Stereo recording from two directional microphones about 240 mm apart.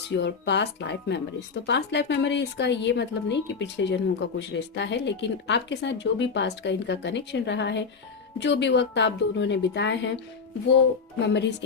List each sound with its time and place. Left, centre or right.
0.1 s a woman's voice: left
11.2 s a woman's voice: left